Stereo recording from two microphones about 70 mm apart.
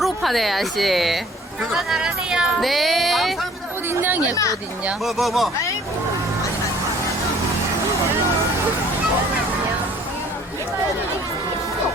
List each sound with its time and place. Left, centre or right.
0.0 s a woman's voice: centre
2.6 s speech: centre
3.8 s speech: right
5.0 s speech: centre